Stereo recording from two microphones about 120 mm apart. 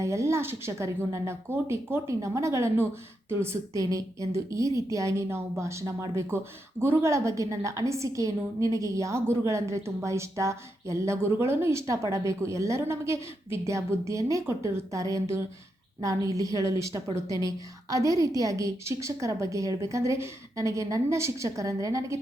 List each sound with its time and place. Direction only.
0.0 s a woman's voice: 25° right (ahead or behind)